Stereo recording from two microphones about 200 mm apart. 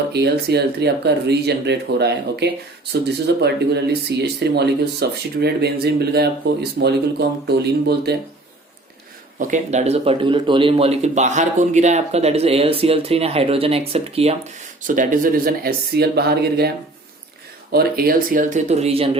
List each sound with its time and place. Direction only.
0.1 s speech: 55° right (ahead or behind)
9.4 s speech: 35° right (ahead or behind)
14.8 s speech: 40° right (ahead or behind)